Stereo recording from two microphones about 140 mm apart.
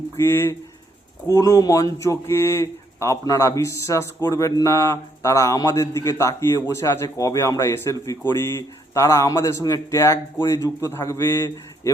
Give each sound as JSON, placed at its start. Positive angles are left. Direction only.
{"t": 0.2, "sound": "speech", "side_deg": 15}